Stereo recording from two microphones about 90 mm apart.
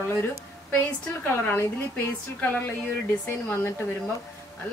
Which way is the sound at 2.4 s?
20° left (ahead or behind).